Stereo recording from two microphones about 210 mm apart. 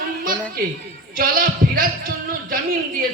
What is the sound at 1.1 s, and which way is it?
A man's voice, 45° right (ahead or behind).